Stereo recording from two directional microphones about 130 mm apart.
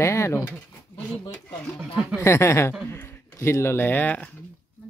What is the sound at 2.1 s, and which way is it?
Speech, 20° left (ahead or behind).